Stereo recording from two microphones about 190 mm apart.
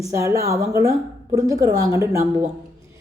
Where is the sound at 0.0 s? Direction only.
15° right (ahead or behind).